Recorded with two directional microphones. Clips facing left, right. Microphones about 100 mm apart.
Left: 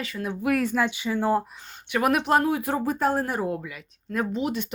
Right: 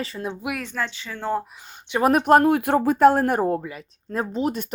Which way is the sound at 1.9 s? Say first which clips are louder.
Right 4 dB; 35° right (ahead or behind).